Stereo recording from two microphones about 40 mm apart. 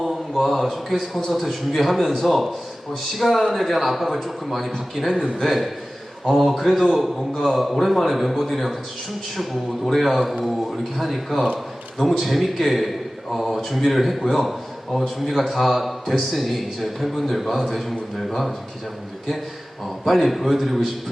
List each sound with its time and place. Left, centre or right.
0.0 s a sound: centre
0.4 s a man's voice: centre
5.1 s a man's voice: centre
5.4 s a man's voice: centre
7.2 s a man's voice: centre
20.1 s a man's voice: centre